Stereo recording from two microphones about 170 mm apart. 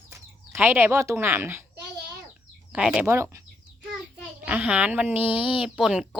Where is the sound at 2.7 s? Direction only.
5° right (ahead or behind).